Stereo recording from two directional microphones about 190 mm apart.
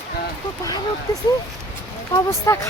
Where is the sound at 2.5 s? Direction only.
15° left (ahead or behind).